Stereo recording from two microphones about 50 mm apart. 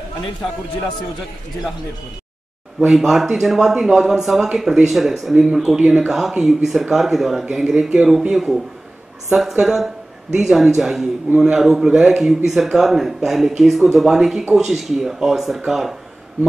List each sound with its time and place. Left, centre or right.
2.9 s speech: centre
7.9 s speech: centre
8.3 s speech: centre
11.3 s a man's voice: centre
11.6 s speech: centre